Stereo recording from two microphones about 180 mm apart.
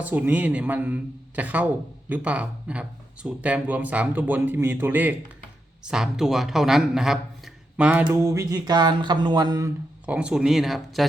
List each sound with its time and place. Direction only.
0.0 s a man's voice: 10° right (ahead or behind)
8.1 s speech: 15° right (ahead or behind)
10.1 s speech: 5° right (ahead or behind)